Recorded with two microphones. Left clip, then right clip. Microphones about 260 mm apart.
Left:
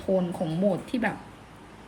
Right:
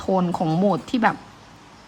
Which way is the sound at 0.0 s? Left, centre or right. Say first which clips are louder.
Right 5 dB; centre.